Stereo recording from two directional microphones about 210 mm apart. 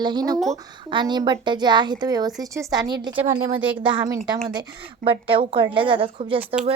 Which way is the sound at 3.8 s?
20° right (ahead or behind).